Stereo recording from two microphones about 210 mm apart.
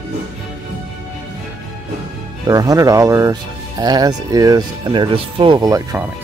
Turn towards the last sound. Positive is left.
turn(degrees=-15)  # may be behind; listen again after turning